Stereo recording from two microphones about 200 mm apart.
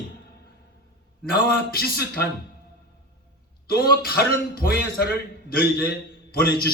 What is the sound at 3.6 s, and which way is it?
A man's voice, 50° left (ahead or behind).